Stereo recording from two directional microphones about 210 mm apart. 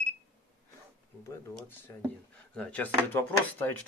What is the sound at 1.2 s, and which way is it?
Speech, 10° left (ahead or behind).